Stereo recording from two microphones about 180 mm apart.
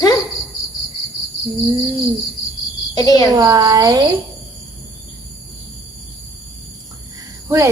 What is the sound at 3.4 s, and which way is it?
Speech, 20° right (ahead or behind).